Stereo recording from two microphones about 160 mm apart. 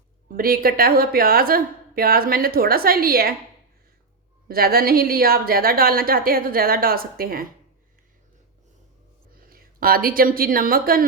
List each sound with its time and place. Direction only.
0.3 s a woman's voice: 65° right (ahead or behind)
4.4 s a woman's voice: 70° right (ahead or behind)
9.5 s speech: 65° right (ahead or behind)